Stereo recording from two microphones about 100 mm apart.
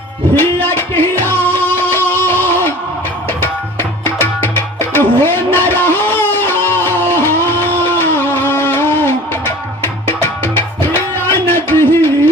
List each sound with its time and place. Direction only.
0.3 s music: 20° left (ahead or behind)
3.4 s tabla: 20° left (ahead or behind)
9.8 s music: 20° left (ahead or behind)